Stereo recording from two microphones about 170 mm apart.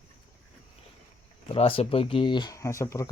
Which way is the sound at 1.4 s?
30° left (ahead or behind).